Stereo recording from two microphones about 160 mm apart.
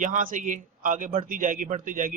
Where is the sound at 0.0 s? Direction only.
55° right (ahead or behind).